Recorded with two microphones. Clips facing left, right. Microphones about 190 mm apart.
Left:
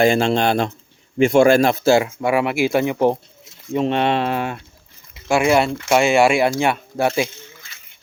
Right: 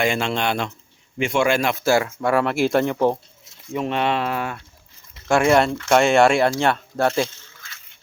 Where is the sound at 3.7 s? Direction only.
25° left (ahead or behind).